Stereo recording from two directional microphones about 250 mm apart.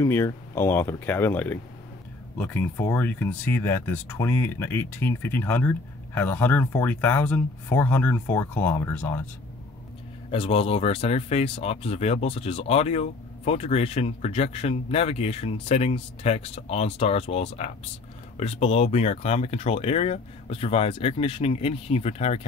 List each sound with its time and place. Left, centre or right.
0.0 s speech: centre
10.3 s speech: left